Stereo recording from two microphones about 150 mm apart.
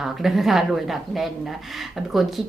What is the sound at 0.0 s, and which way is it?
A woman's voice, centre (ahead or behind).